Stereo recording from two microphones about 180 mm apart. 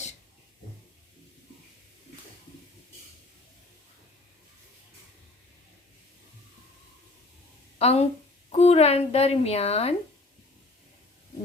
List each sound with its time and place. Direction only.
7.8 s a woman's voice: 35° left (ahead or behind)